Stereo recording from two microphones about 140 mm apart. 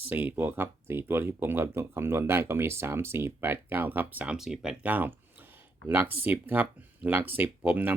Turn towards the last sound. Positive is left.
turn(degrees=-15)  # may be behind; listen again after turning